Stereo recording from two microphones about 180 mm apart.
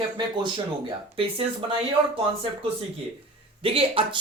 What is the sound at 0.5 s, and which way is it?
Speech, 30° right (ahead or behind).